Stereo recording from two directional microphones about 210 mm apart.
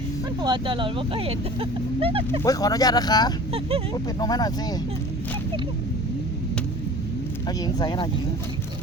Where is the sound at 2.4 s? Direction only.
15° left (ahead or behind).